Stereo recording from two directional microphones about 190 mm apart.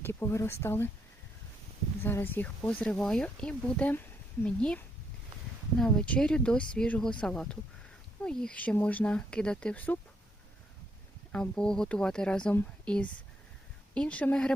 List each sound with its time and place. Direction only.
0.0 s speech: 10° left (ahead or behind)
2.0 s speech: 10° left (ahead or behind)
5.8 s speech: 5° left (ahead or behind)
11.3 s speech: 5° left (ahead or behind)